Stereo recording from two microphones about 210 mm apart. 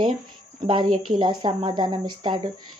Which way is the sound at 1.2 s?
20° right (ahead or behind).